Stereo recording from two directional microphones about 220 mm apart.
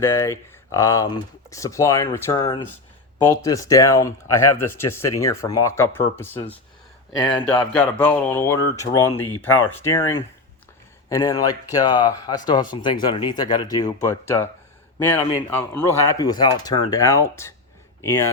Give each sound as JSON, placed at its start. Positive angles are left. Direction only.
{"t": 0.0, "sound": "speech", "side_deg": 10}
{"t": 7.7, "sound": "speech", "side_deg": 5}